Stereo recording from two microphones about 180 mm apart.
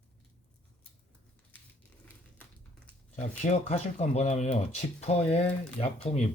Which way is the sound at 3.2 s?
40° left (ahead or behind).